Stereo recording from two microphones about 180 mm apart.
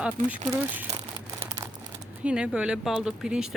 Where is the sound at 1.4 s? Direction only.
15° right (ahead or behind).